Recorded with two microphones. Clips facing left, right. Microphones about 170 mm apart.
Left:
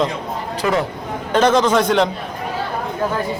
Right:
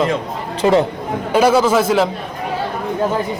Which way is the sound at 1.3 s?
10° right (ahead or behind).